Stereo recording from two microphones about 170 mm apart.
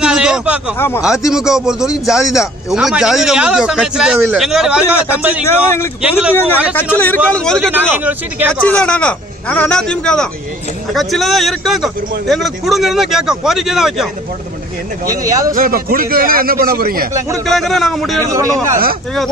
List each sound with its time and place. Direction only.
0.0 s a sound: 5° right (ahead or behind)
0.7 s speech: 15° left (ahead or behind)
1.3 s a man's voice: 5° right (ahead or behind)
5.5 s a man's voice: 15° left (ahead or behind)
7.7 s speech: 10° right (ahead or behind)
8.6 s a man's voice: 5° left (ahead or behind)
15.0 s speech: 20° right (ahead or behind)
15.5 s a man's voice: 55° right (ahead or behind)
17.5 s a man's voice: centre (ahead or behind)
18.2 s speech: 15° right (ahead or behind)